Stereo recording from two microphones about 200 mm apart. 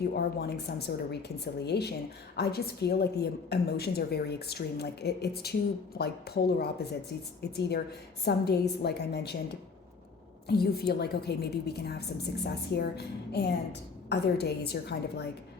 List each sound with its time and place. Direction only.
0.1 s a woman's voice: 55° left (ahead or behind)
10.6 s a woman's voice: 55° left (ahead or behind)